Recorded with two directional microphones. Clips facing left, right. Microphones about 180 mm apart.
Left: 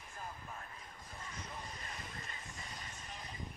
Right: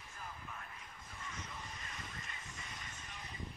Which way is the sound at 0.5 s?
35° left (ahead or behind).